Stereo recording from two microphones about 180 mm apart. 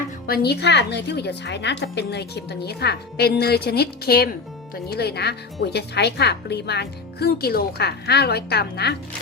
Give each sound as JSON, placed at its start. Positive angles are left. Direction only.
{"t": 0.3, "sound": "a woman's voice", "side_deg": 60}